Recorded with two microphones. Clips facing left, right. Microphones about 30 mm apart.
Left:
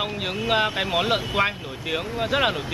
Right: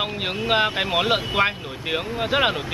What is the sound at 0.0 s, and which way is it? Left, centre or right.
Speech, centre.